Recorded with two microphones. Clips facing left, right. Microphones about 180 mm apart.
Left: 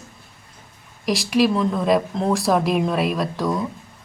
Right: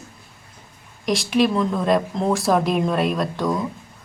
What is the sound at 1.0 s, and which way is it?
Speech, centre (ahead or behind).